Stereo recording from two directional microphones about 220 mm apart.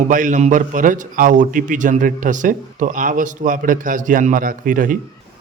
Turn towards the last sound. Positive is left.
turn(degrees=-40)  # may be behind; listen again after turning